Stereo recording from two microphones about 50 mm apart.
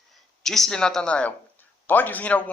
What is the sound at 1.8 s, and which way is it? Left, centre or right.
Speech, left.